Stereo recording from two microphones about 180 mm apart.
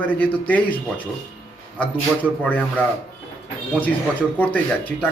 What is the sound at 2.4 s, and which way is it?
Speech, 10° left (ahead or behind).